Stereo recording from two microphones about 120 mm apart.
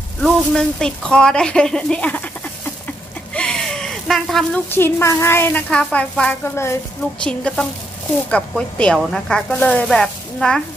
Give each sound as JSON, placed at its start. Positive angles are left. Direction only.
{"t": 0.2, "sound": "a woman's voice", "side_deg": 5}
{"t": 3.3, "sound": "a sound", "side_deg": 5}
{"t": 4.6, "sound": "a woman's voice", "side_deg": 20}
{"t": 6.5, "sound": "a woman's voice", "side_deg": 20}
{"t": 7.2, "sound": "a woman's voice", "side_deg": 10}